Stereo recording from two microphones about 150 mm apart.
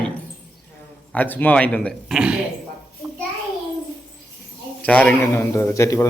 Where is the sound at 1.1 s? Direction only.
10° left (ahead or behind).